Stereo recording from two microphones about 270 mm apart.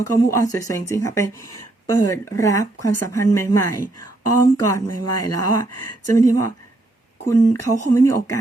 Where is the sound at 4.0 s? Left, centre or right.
Left.